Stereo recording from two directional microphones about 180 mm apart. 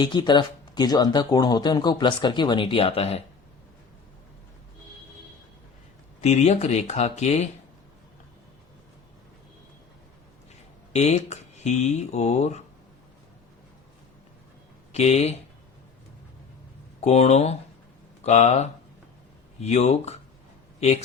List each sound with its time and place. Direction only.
0.0 s speech: 25° left (ahead or behind)
6.2 s speech: 35° left (ahead or behind)
10.9 s speech: 40° left (ahead or behind)
14.9 s speech: 35° left (ahead or behind)
17.0 s speech: 35° left (ahead or behind)